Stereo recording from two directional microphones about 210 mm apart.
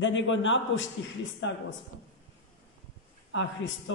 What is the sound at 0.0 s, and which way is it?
A man's voice, 65° left (ahead or behind).